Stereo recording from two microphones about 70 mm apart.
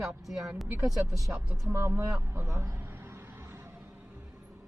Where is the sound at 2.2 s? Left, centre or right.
Right.